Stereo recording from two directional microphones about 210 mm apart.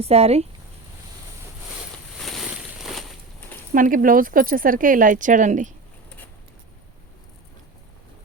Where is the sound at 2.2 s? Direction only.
Centre (ahead or behind).